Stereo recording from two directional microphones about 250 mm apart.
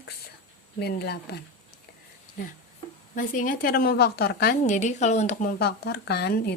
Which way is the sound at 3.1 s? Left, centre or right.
Left.